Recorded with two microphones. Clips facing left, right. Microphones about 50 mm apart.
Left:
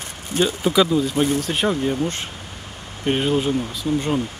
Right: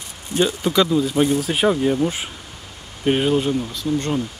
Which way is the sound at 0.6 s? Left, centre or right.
Centre.